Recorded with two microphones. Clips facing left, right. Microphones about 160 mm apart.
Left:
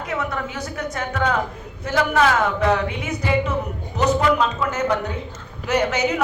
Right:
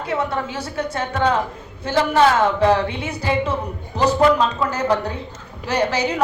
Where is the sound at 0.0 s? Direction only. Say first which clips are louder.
Right 3 dB; 30° right (ahead or behind).